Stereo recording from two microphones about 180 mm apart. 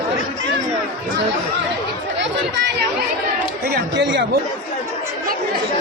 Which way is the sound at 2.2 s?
75° right (ahead or behind).